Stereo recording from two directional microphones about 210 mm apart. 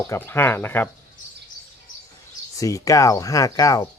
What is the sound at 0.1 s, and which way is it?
Speech, 10° left (ahead or behind).